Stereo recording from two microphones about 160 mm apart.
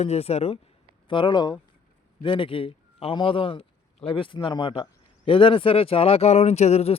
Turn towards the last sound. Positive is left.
turn(degrees=40)  # may be behind; listen again after turning